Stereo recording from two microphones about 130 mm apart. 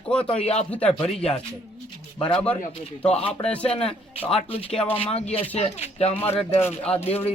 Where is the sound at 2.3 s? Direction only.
10° left (ahead or behind).